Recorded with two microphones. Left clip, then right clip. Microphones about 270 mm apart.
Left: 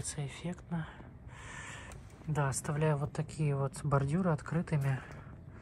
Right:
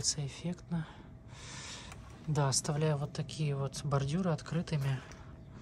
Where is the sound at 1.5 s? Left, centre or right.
Centre.